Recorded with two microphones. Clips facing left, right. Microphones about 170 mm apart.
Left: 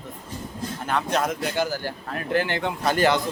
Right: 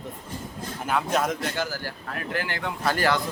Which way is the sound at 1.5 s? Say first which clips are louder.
Left 5 dB; 20° left (ahead or behind).